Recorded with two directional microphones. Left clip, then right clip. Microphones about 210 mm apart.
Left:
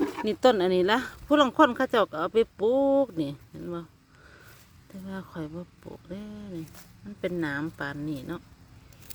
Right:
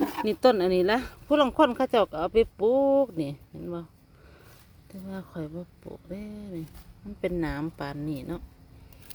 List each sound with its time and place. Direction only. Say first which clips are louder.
0.0 s a sound: right 1 dB; 50° right (ahead or behind)
0.3 s speech: even; centre (ahead or behind)
5.0 s speech: even; centre (ahead or behind)